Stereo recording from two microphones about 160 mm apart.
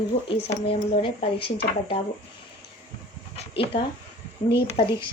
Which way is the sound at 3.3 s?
35° left (ahead or behind).